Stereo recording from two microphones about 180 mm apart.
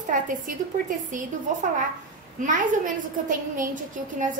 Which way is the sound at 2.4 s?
45° right (ahead or behind).